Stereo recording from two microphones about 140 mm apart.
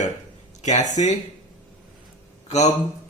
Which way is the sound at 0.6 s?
55° left (ahead or behind).